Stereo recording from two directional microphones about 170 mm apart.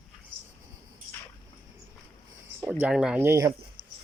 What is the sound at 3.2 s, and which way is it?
Speech, 15° right (ahead or behind).